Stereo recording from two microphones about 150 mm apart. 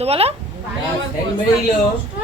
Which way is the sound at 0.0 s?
40° right (ahead or behind).